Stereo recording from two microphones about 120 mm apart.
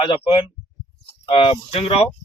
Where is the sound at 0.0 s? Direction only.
50° left (ahead or behind).